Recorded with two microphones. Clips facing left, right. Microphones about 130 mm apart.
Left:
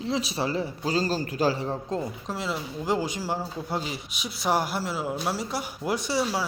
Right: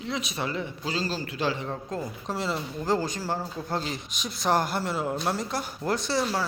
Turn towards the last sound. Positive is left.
turn(degrees=10)  # may be behind; listen again after turning